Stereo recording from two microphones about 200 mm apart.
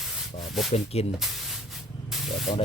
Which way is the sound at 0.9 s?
30° left (ahead or behind).